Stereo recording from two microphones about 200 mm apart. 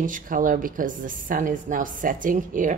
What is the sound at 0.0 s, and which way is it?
Speech, 40° right (ahead or behind).